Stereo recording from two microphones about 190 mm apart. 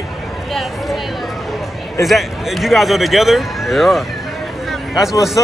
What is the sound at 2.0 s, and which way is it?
A man's voice, centre (ahead or behind).